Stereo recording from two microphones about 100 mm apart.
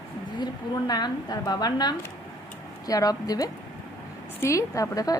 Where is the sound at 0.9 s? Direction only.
40° left (ahead or behind).